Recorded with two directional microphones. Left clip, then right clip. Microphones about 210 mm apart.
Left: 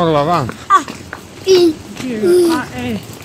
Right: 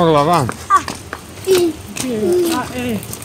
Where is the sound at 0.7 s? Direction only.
50° left (ahead or behind).